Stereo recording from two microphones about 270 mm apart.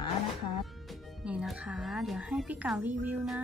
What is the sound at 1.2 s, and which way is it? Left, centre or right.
A woman's voice, centre.